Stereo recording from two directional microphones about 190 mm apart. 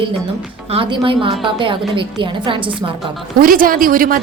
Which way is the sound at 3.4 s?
50° right (ahead or behind).